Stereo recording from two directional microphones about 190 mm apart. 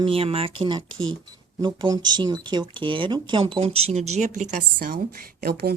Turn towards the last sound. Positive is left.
turn(degrees=-55)  # may be behind; listen again after turning